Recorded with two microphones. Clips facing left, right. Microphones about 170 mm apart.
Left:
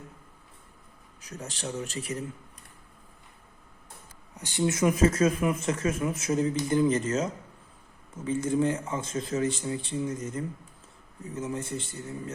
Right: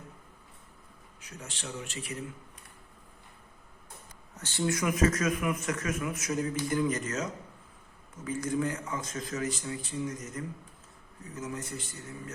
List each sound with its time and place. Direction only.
1.2 s speech: 40° left (ahead or behind)
4.4 s speech: 15° left (ahead or behind)